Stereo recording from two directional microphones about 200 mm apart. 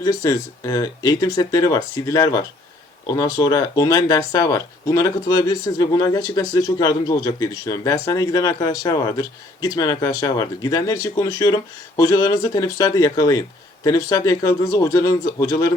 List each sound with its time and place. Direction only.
0.0 s speech: 20° left (ahead or behind)